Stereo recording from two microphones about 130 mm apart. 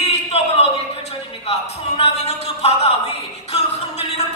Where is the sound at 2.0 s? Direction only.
55° left (ahead or behind).